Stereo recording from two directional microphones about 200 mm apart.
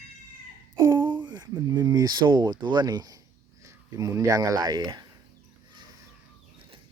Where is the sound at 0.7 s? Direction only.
15° right (ahead or behind).